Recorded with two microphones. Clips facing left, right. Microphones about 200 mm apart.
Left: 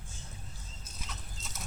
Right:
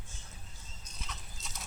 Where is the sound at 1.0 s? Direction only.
10° left (ahead or behind).